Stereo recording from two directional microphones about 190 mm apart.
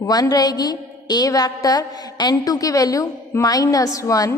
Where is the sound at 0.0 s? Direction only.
20° left (ahead or behind).